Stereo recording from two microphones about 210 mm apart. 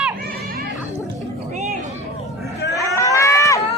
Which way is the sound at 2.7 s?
15° left (ahead or behind).